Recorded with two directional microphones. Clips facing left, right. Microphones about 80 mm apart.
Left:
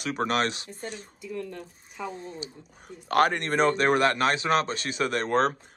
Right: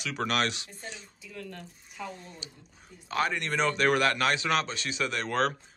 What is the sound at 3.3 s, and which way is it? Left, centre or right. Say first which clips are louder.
A man's voice: left 4 dB; left.